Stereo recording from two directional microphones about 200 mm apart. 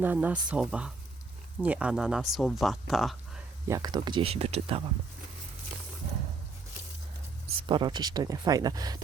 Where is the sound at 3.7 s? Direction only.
20° right (ahead or behind).